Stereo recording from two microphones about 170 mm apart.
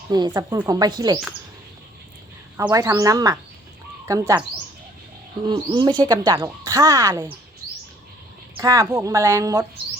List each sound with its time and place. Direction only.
0.1 s speech: 25° right (ahead or behind)
2.6 s speech: 20° right (ahead or behind)
5.5 s speech: 25° right (ahead or behind)
8.6 s speech: 20° right (ahead or behind)